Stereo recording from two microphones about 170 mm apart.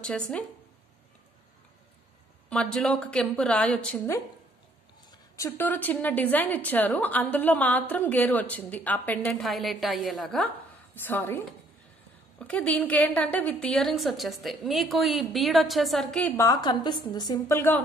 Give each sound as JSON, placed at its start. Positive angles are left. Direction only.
{"t": 0.0, "sound": "a woman's voice", "side_deg": 5}
{"t": 2.5, "sound": "a woman's voice", "side_deg": 5}
{"t": 5.3, "sound": "a woman's voice", "side_deg": 15}
{"t": 11.0, "sound": "a woman's voice", "side_deg": 10}
{"t": 16.4, "sound": "a woman's voice", "side_deg": 25}